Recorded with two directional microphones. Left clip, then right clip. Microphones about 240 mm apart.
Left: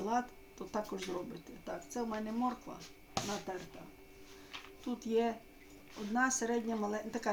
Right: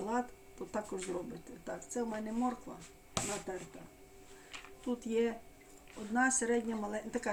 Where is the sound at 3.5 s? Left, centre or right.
Centre.